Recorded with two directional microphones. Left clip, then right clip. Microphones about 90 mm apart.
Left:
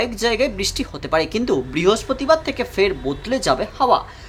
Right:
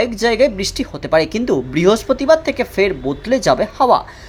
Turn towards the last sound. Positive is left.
turn(degrees=-40)  # may be behind; listen again after turning